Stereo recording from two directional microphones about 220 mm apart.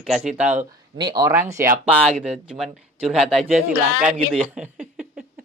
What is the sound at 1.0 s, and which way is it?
Speech, 45° right (ahead or behind).